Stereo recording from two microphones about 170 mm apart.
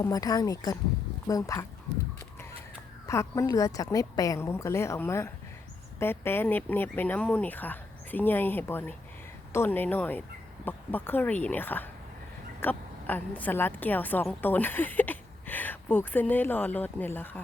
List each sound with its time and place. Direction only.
0.0 s speech: 20° left (ahead or behind)
3.1 s a woman's voice: 15° left (ahead or behind)